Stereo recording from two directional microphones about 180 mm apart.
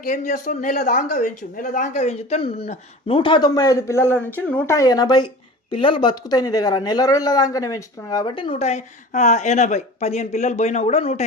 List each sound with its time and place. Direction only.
0.0 s a man's voice: 45° left (ahead or behind)